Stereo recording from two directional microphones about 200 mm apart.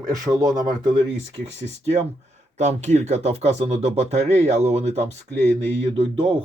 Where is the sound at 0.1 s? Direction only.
20° right (ahead or behind).